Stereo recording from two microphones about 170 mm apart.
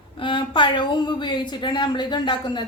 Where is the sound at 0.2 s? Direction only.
30° left (ahead or behind).